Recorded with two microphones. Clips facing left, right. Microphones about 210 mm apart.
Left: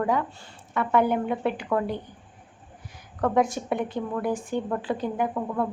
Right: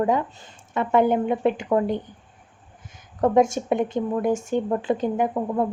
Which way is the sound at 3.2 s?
20° right (ahead or behind).